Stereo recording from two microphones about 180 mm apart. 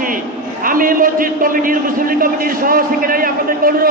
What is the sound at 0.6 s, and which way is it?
A man's voice, 50° right (ahead or behind).